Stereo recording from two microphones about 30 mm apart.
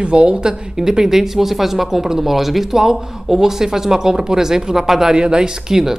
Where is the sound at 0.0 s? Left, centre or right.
Right; by 5.1 s centre.